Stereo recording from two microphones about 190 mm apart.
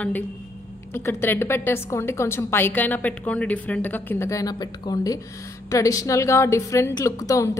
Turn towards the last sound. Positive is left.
turn(degrees=15)  # may be behind; listen again after turning